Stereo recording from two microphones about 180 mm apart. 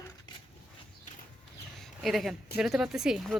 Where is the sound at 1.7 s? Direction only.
Centre (ahead or behind).